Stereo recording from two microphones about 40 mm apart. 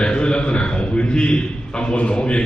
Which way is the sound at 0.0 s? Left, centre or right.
Left.